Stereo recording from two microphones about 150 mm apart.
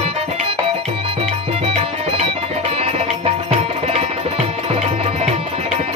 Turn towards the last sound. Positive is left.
turn(degrees=-40)  # may be behind; listen again after turning